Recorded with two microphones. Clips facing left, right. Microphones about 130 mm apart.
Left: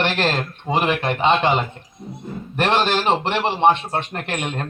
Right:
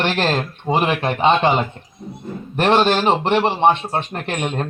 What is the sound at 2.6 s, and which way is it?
Speech, 10° right (ahead or behind).